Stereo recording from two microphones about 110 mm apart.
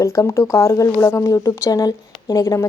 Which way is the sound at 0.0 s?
25° left (ahead or behind).